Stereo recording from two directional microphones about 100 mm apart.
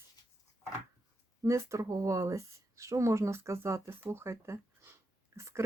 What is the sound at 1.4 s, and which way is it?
Speech, 30° right (ahead or behind).